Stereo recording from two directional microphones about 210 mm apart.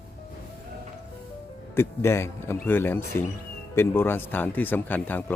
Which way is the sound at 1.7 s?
10° left (ahead or behind).